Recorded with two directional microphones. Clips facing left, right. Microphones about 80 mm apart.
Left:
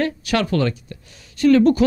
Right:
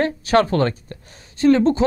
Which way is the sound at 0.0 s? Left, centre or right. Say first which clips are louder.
Right 4 dB; right.